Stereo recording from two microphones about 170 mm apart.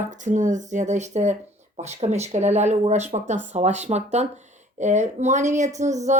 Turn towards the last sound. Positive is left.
turn(degrees=-45)  # may be behind; listen again after turning